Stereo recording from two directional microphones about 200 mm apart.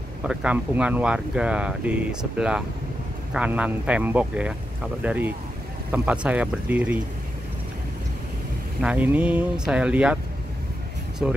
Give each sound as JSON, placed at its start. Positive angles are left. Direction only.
{"t": 0.3, "sound": "speech", "side_deg": -5}
{"t": 8.8, "sound": "speech", "side_deg": -5}
{"t": 11.2, "sound": "speech", "side_deg": -5}